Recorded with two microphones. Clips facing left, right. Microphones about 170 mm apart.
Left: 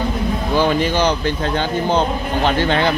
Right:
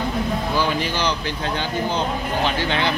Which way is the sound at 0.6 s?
50° left (ahead or behind).